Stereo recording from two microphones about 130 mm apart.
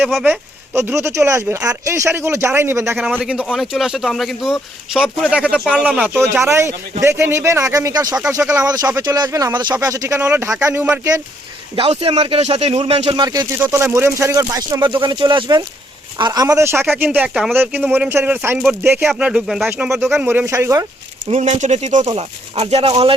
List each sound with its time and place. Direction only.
0.0 s speech: 5° right (ahead or behind)
0.3 s speech: 15° right (ahead or behind)
3.2 s speech: 5° right (ahead or behind)
6.4 s speech: 20° right (ahead or behind)
11.8 s speech: 45° right (ahead or behind)
13.1 s speech: 30° right (ahead or behind)
19.3 s speech: centre (ahead or behind)
20.1 s speech: 20° right (ahead or behind)
21.2 s speech: 65° right (ahead or behind); by 23.1 s 45° right (ahead or behind)